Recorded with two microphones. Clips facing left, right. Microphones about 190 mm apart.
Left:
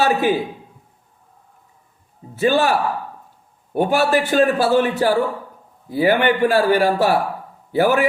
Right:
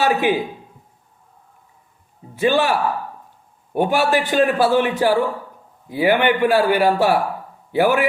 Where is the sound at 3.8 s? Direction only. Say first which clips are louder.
Left 1 dB; 40° left (ahead or behind).